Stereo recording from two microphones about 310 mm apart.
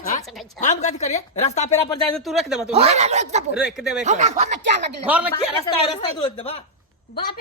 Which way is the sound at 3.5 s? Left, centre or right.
Centre.